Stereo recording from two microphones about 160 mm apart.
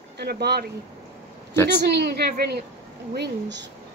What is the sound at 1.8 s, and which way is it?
Speech, 90° right.